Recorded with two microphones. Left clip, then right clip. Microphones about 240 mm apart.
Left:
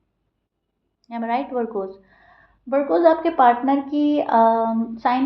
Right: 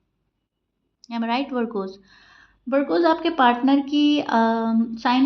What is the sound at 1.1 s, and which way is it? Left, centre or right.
Speech, right.